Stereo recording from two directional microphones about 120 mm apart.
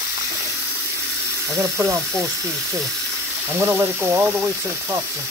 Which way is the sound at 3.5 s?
20° right (ahead or behind).